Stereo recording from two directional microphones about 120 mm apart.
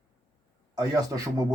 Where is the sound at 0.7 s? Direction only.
30° right (ahead or behind).